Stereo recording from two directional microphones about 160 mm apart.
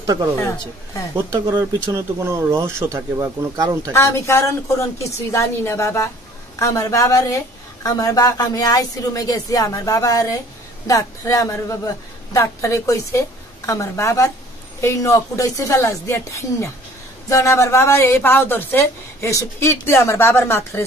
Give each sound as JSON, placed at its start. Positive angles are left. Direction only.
{"t": 0.0, "sound": "speech", "side_deg": -25}
{"t": 0.4, "sound": "speech", "side_deg": 20}
{"t": 1.1, "sound": "speech", "side_deg": -25}
{"t": 3.9, "sound": "speech", "side_deg": 15}